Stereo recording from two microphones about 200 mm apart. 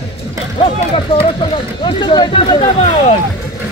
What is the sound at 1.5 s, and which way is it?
Speech, 25° left (ahead or behind).